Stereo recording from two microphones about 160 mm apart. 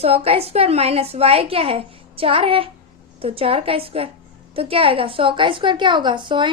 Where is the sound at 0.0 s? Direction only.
40° right (ahead or behind).